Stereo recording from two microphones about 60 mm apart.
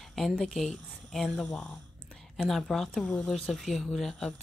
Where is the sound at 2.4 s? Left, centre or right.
Centre.